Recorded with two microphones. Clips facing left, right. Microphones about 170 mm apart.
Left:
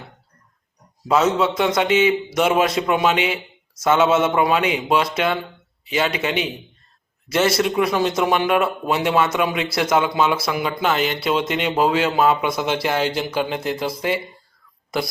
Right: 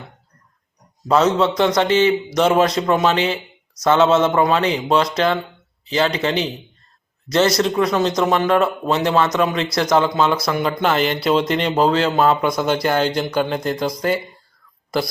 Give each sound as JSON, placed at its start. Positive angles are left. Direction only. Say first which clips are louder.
{"t": 1.0, "sound": "a man's voice", "louder": "right 2 dB", "side_deg": 5}
{"t": 7.8, "sound": "a man's voice", "louder": "right 2 dB", "side_deg": 10}
{"t": 14.8, "sound": "a sound", "louder": "right 3 dB", "side_deg": 0}